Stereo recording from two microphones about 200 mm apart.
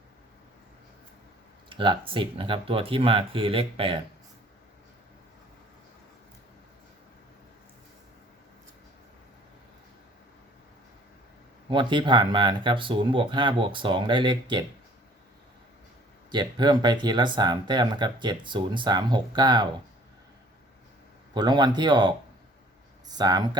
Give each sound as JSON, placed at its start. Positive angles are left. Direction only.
{"t": 1.7, "sound": "speech", "side_deg": -25}
{"t": 11.7, "sound": "speech", "side_deg": -25}
{"t": 16.3, "sound": "speech", "side_deg": -20}
{"t": 21.3, "sound": "speech", "side_deg": -20}